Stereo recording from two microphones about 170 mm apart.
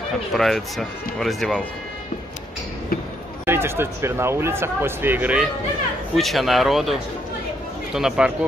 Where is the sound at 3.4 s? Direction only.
15° right (ahead or behind).